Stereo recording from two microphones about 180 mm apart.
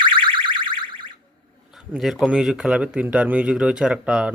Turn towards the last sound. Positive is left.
turn(degrees=-5)  # may be behind; listen again after turning